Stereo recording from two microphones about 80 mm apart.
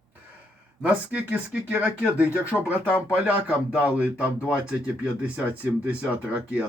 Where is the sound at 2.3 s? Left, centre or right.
Left.